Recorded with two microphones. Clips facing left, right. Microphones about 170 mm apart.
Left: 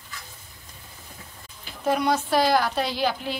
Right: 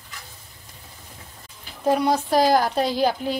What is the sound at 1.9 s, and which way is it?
A woman's voice, 35° right (ahead or behind).